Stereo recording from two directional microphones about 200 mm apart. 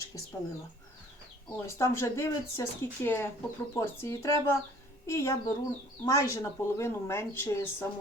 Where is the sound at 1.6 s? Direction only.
15° left (ahead or behind).